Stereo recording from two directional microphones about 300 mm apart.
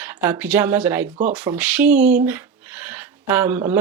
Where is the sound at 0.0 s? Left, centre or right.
Centre.